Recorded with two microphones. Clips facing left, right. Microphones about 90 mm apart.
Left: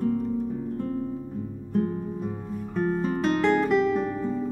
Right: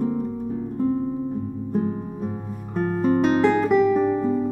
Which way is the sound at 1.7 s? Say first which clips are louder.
Even; 5° right (ahead or behind).